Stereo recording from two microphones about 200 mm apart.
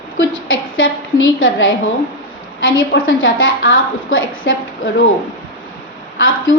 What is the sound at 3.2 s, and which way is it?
A woman's voice, 75° left (ahead or behind).